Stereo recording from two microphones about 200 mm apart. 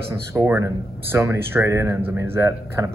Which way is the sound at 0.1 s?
15° right (ahead or behind).